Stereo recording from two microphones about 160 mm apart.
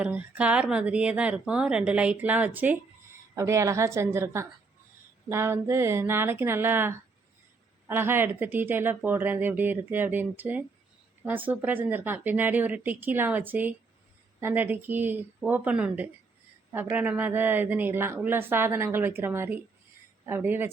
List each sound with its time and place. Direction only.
0.0 s a woman's voice: 10° right (ahead or behind)